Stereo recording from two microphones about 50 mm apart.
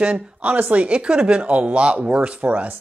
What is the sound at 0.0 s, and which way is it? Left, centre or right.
Speech, right.